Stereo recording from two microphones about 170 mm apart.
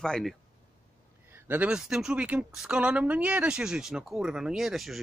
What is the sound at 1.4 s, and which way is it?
Speech, 10° right (ahead or behind).